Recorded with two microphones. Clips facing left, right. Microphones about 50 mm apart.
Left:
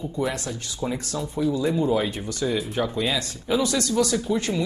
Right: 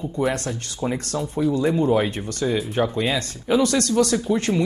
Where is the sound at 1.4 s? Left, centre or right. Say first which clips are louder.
Right 3 dB; right.